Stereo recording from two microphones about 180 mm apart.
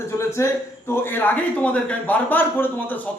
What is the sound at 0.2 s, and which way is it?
A man's voice, 15° left (ahead or behind).